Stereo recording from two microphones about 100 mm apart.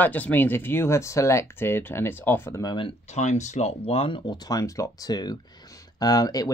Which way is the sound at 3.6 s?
80° left.